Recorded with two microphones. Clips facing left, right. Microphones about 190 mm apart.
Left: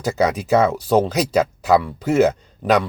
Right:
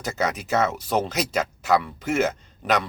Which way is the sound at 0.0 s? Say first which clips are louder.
Left 7 dB; 35° left (ahead or behind).